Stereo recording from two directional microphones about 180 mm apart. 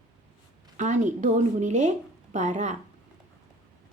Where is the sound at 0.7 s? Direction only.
45° right (ahead or behind).